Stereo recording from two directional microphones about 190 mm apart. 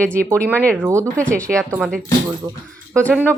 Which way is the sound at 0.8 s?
15° right (ahead or behind).